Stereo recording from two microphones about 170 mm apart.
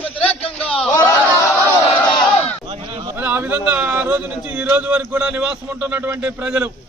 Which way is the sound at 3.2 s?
10° right (ahead or behind).